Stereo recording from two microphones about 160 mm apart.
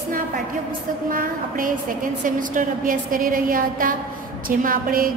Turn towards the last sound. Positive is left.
turn(degrees=-60)  # may be behind; listen again after turning